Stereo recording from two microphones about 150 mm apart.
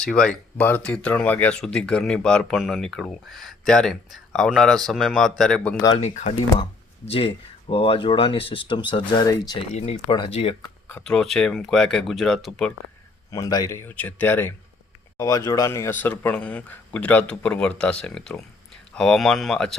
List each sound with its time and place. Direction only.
0.0 s speech: 5° left (ahead or behind)
6.0 s speech: 50° left (ahead or behind)
7.1 s speech: 40° left (ahead or behind)
9.6 s speech: 45° left (ahead or behind)
10.8 s speech: 10° left (ahead or behind)
13.3 s speech: 25° left (ahead or behind); by 19.7 s 5° left (ahead or behind)